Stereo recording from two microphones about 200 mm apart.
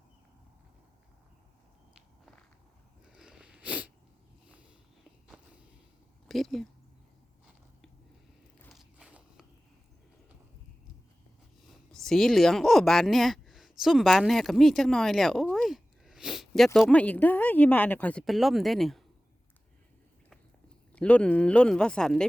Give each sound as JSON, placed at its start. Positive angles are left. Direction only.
{"t": 3.2, "sound": "sniff", "side_deg": -5}
{"t": 5.3, "sound": "walk", "side_deg": -5}
{"t": 6.2, "sound": "speech", "side_deg": 0}
{"t": 8.6, "sound": "biting", "side_deg": 0}
{"t": 11.7, "sound": "speech", "side_deg": 0}
{"t": 20.9, "sound": "speech", "side_deg": 5}